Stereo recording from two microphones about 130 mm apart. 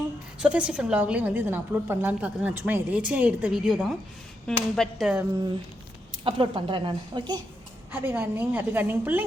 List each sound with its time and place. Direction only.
0.3 s a woman's voice: 10° right (ahead or behind)
6.2 s speech: 40° right (ahead or behind)
7.9 s a woman's voice: 15° right (ahead or behind)